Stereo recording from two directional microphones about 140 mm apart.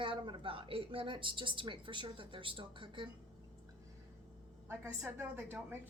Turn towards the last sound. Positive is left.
turn(degrees=-15)  # may be behind; listen again after turning